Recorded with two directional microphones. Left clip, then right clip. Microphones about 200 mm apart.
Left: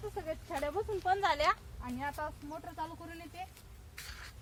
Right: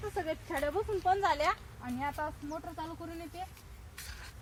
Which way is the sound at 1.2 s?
5° right (ahead or behind).